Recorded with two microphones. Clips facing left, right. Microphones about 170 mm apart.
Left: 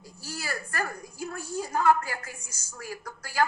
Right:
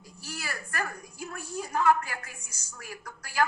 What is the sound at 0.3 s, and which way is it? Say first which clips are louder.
A woman's voice: left 3 dB; 30° left (ahead or behind).